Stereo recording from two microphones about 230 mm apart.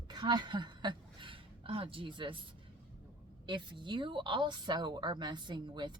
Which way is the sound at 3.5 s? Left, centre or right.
Right.